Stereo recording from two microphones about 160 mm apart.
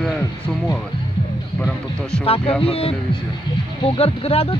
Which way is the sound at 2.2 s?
40° left (ahead or behind).